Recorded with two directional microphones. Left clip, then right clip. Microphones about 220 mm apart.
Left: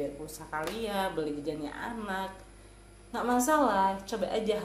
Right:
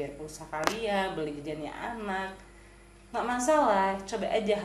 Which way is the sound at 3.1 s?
25° left (ahead or behind).